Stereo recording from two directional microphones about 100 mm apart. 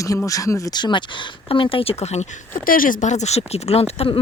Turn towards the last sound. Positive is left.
turn(degrees=85)